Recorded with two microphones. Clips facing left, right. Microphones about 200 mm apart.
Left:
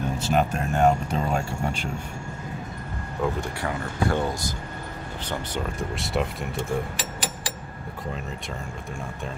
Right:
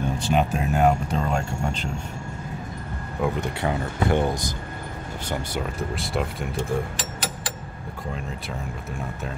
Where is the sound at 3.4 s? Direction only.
20° right (ahead or behind).